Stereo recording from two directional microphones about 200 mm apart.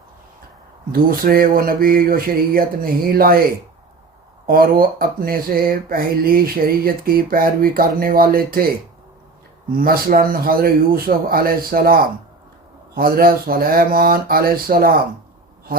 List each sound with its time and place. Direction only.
0.9 s speech: 45° right (ahead or behind)
4.4 s speech: 45° right (ahead or behind)
9.7 s speech: 45° right (ahead or behind)